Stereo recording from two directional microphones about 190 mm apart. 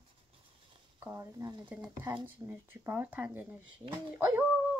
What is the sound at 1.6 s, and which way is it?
Speech, 10° right (ahead or behind).